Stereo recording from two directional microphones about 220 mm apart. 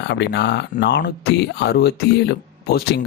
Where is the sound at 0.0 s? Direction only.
50° left (ahead or behind).